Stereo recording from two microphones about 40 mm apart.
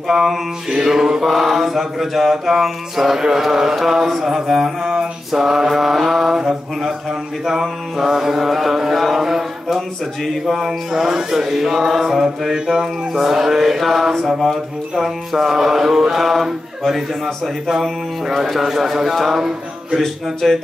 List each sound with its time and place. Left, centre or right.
0.1 s mantra: centre
1.2 s mantra: centre
7.4 s mantra: centre
9.1 s a sound: centre
10.4 s mantra: centre
16.4 s speech: centre
17.6 s mantra: centre
20.4 s mantra: centre